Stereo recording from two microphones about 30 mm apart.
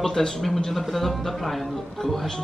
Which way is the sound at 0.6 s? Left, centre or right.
Centre.